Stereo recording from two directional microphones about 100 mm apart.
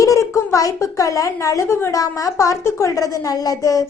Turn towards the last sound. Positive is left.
turn(degrees=35)  # may be behind; listen again after turning